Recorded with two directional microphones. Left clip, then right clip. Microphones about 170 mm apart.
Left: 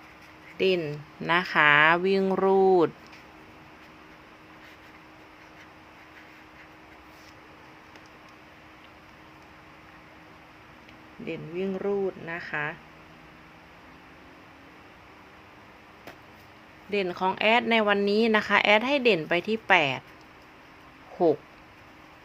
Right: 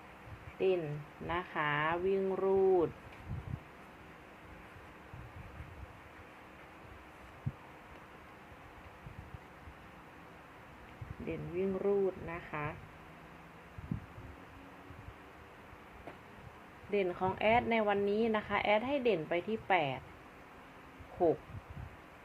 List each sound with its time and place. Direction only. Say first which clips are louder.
1.3 s speech: left 15 dB; 50° left (ahead or behind); by 2.9 s 85° left
11.3 s a sound: left 5 dB; 25° left (ahead or behind)
16.9 s speech: left 7 dB; 30° left (ahead or behind)